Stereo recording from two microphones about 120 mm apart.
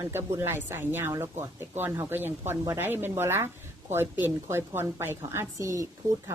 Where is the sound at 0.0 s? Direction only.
20° right (ahead or behind).